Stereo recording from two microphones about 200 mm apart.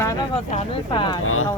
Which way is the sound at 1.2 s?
90° left.